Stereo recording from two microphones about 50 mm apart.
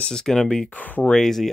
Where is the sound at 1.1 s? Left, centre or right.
Centre.